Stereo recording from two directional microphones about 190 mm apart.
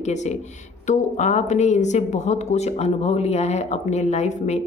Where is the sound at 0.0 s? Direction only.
35° left (ahead or behind).